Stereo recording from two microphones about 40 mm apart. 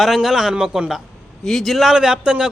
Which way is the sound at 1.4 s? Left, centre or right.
Centre.